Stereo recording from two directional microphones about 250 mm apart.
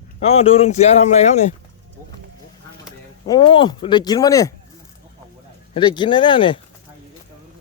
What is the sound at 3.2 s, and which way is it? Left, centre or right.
Speech, centre.